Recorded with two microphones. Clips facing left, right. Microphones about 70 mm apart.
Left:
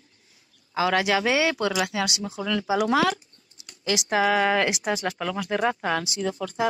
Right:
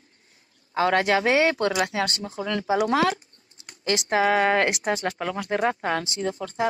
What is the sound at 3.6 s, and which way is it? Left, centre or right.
Typing, right.